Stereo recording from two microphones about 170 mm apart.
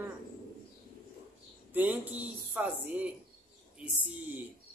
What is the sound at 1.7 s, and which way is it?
Speech, 10° right (ahead or behind).